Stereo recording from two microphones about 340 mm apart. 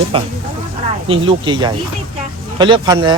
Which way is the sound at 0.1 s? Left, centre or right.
Centre.